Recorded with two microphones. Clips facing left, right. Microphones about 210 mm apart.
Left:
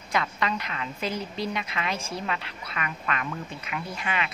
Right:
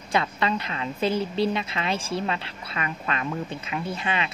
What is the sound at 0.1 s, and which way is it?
A woman's voice, 30° right (ahead or behind).